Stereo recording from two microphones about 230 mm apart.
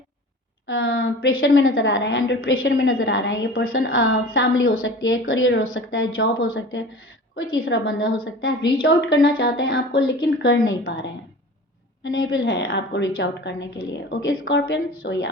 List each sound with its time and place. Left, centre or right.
0.7 s a woman's voice: left
12.0 s a woman's voice: left